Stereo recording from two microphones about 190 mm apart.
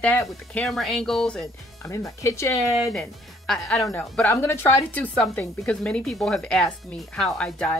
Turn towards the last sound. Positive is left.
turn(degrees=5)  # may be behind; listen again after turning